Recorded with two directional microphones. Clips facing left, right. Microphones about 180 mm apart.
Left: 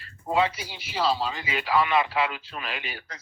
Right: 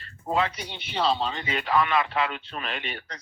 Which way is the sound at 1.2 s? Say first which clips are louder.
Right 1 dB; 30° right (ahead or behind).